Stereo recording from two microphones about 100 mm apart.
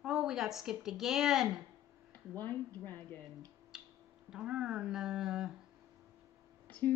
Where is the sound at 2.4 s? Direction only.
20° left (ahead or behind).